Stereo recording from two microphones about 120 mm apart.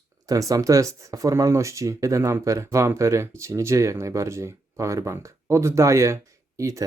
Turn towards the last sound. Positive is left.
turn(degrees=-25)  # may be behind; listen again after turning